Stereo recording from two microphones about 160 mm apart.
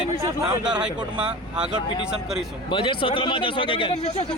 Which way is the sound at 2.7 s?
35° left (ahead or behind).